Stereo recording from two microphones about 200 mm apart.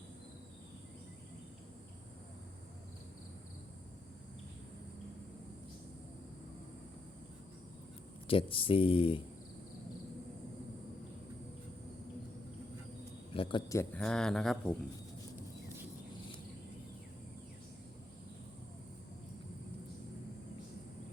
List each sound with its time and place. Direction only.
8.3 s speech: 25° left (ahead or behind)
13.3 s a man's voice: 25° left (ahead or behind)
14.0 s speech: 5° left (ahead or behind)